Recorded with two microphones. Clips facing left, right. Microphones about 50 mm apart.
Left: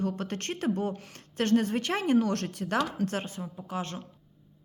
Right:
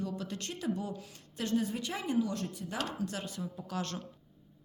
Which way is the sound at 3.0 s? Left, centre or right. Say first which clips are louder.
Left 5 dB; left.